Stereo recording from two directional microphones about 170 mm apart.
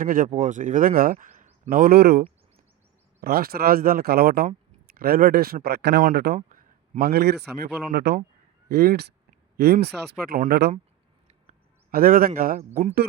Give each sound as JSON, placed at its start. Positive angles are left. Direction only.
{"t": 0.0, "sound": "speech", "side_deg": -55}
{"t": 6.0, "sound": "speech", "side_deg": -60}
{"t": 7.9, "sound": "speech", "side_deg": -75}
{"t": 10.5, "sound": "speech", "side_deg": -75}
{"t": 11.4, "sound": "a sound", "side_deg": -60}
{"t": 12.4, "sound": "speech", "side_deg": -55}